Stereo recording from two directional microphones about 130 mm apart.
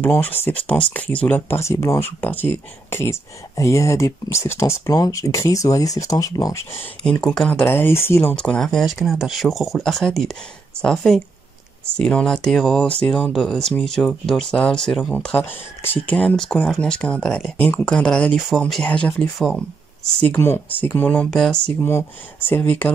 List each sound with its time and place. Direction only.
0.0 s speech: 15° left (ahead or behind)
7.0 s speech: 5° left (ahead or behind)
7.6 s speech: 20° left (ahead or behind)
20.2 s speech: 20° left (ahead or behind); by 21.7 s 5° left (ahead or behind)
22.5 s speech: 15° left (ahead or behind)